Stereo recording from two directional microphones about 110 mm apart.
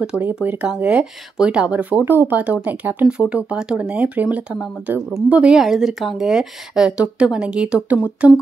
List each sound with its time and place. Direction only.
0.0 s speech: 10° right (ahead or behind)